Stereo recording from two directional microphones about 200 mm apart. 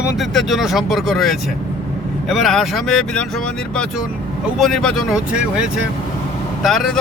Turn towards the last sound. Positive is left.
turn(degrees=0)  # may be behind; listen again after turning